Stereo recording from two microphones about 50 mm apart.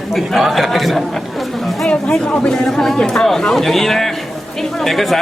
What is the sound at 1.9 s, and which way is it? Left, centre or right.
A man's voice, centre.